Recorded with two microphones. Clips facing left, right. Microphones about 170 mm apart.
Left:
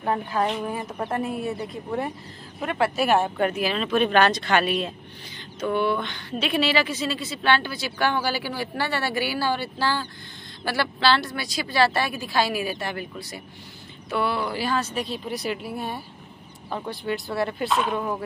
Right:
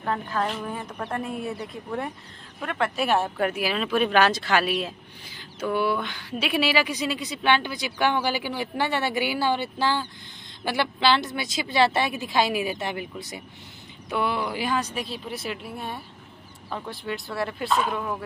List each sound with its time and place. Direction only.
0.0 s a woman's voice: 15° left (ahead or behind); by 15.0 s 15° right (ahead or behind)
15.0 s speech: centre (ahead or behind)